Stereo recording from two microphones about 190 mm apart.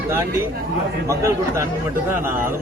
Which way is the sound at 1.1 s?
15° right (ahead or behind).